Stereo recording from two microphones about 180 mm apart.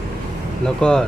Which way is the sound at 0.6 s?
5° left (ahead or behind).